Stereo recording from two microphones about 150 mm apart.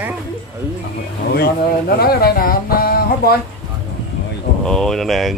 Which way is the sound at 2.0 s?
90° left.